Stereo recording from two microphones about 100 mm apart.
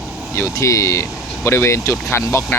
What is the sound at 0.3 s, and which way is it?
Speech, 30° left (ahead or behind).